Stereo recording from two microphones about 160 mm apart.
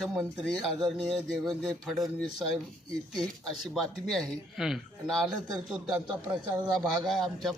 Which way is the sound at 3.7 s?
Centre (ahead or behind).